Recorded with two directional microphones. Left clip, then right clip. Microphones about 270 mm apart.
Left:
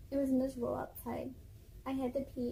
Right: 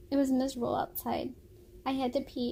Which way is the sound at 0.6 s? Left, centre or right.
Right.